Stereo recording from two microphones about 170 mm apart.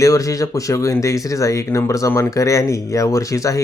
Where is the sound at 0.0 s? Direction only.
20° left (ahead or behind).